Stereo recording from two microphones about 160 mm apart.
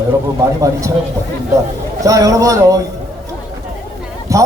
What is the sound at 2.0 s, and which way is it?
Speech, 20° right (ahead or behind).